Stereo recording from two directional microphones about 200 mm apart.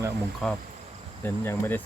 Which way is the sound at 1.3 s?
10° left (ahead or behind).